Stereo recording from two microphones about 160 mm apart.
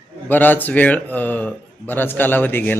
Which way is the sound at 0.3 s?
10° left (ahead or behind).